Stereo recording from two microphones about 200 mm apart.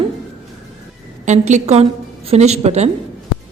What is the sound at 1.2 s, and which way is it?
A woman's voice, 35° right (ahead or behind).